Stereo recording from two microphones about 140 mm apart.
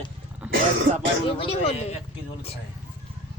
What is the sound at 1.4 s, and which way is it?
Speech, 45° left (ahead or behind).